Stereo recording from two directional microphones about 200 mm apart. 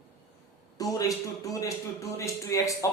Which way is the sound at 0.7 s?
20° left (ahead or behind).